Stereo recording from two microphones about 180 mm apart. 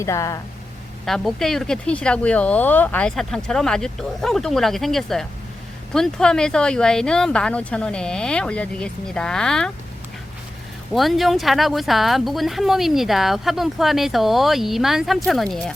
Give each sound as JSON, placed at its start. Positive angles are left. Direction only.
{"t": 0.0, "sound": "speech", "side_deg": 15}
{"t": 1.0, "sound": "speech", "side_deg": 0}
{"t": 10.9, "sound": "speech", "side_deg": 0}